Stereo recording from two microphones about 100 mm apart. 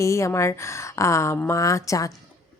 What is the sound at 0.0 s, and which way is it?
Speech, 30° left (ahead or behind).